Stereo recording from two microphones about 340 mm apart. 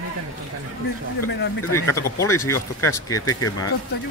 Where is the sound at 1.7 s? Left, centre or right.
Centre.